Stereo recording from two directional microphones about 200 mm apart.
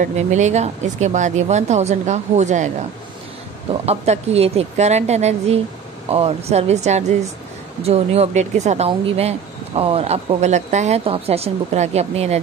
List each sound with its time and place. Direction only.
0.0 s speech: 35° right (ahead or behind)
3.8 s speech: 30° right (ahead or behind)